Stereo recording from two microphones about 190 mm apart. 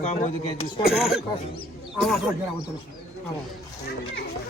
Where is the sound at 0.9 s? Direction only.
Centre (ahead or behind).